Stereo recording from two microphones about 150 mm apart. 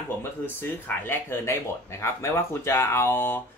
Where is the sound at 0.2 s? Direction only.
15° left (ahead or behind).